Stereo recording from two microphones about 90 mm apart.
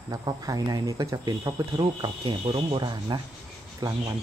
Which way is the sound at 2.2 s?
90° right.